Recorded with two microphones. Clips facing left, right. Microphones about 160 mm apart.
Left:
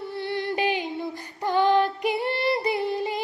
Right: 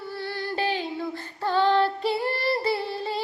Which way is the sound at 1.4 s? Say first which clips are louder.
Left 1 dB; 15° left (ahead or behind).